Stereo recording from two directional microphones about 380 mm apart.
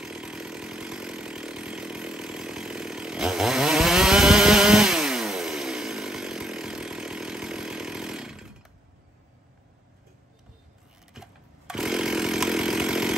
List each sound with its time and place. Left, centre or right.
0.0 s chainsaw: centre
11.1 s chainsaw: centre